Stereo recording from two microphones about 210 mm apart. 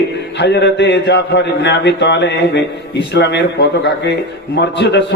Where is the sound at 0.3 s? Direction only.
55° left (ahead or behind).